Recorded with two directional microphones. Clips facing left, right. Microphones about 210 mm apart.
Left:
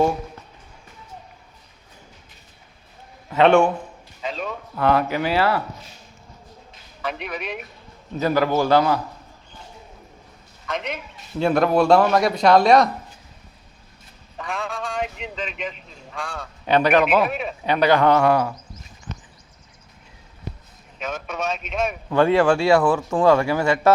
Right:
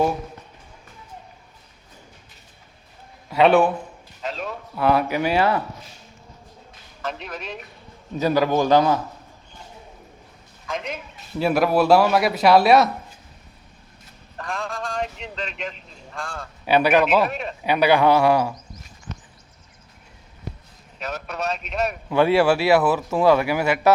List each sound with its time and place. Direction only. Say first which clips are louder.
3.2 s a man's voice: left 1 dB; 5° right (ahead or behind)
7.0 s speech: left 2 dB; 5° left (ahead or behind)
8.2 s speech: even; 15° right (ahead or behind)
10.7 s a man's voice: left 1 dB; centre (ahead or behind)
14.3 s a man's voice: left 1 dB; centre (ahead or behind)
17.1 s speech: even; 5° left (ahead or behind)
17.7 s speech: even; 10° right (ahead or behind)
21.2 s speech: even; centre (ahead or behind)